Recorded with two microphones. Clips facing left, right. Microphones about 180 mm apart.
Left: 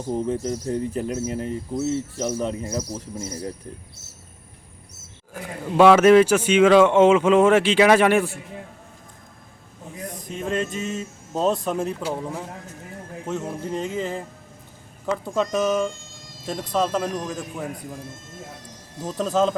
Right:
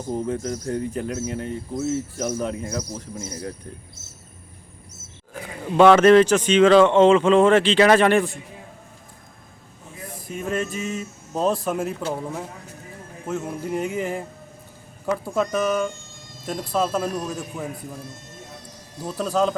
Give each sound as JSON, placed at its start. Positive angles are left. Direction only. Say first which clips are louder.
{"t": 0.1, "sound": "speech", "louder": "left 1 dB", "side_deg": 0}
{"t": 1.3, "sound": "speech", "louder": "left 1 dB", "side_deg": 35}
{"t": 2.4, "sound": "speech", "louder": "left 1 dB", "side_deg": 0}
{"t": 5.3, "sound": "speech", "louder": "even", "side_deg": 5}
{"t": 10.2, "sound": "speech", "louder": "even", "side_deg": -5}
{"t": 13.7, "sound": "speech", "louder": "right 2 dB", "side_deg": -10}
{"t": 15.5, "sound": "speech", "louder": "left 1 dB", "side_deg": 5}
{"t": 19.2, "sound": "speech", "louder": "left 1 dB", "side_deg": 0}